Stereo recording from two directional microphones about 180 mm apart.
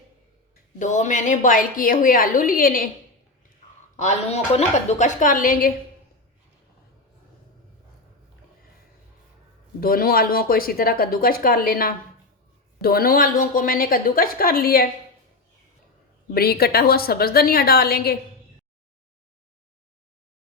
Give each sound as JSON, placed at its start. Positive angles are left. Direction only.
{"t": 0.8, "sound": "a woman's voice", "side_deg": 45}
{"t": 3.9, "sound": "speech", "side_deg": 40}
{"t": 9.8, "sound": "a woman's voice", "side_deg": 55}
{"t": 16.3, "sound": "speech", "side_deg": 60}